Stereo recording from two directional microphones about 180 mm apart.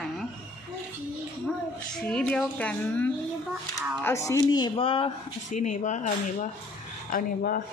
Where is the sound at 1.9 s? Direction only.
5° left (ahead or behind); by 5.1 s 30° left (ahead or behind).